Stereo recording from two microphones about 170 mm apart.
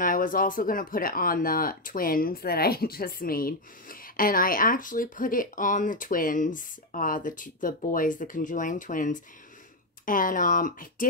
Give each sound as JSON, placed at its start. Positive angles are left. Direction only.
{"t": 0.0, "sound": "speech", "side_deg": 55}